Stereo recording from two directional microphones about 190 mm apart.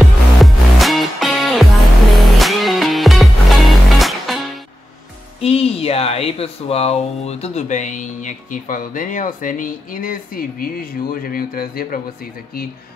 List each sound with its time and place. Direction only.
0.0 s music: centre (ahead or behind)
5.4 s speech: 30° left (ahead or behind); by 12.0 s 50° left (ahead or behind)